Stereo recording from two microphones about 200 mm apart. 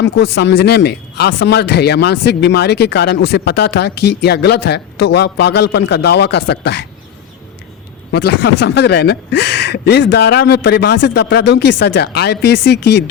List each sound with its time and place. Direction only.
0.0 s speech: 55° left (ahead or behind)
8.1 s speech: 55° left (ahead or behind)